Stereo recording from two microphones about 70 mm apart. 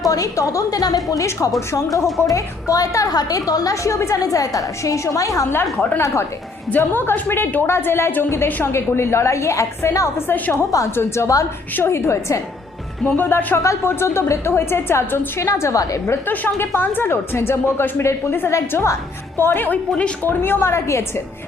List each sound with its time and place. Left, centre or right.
0.0 s a woman's voice: left
1.1 s a woman's voice: left
5.7 s a woman's voice: left
10.2 s a woman's voice: left
10.9 s a woman's voice: left
13.1 s a woman's voice: left
13.6 s a woman's voice: left
16.2 s a woman's voice: left
20.4 s a woman's voice: left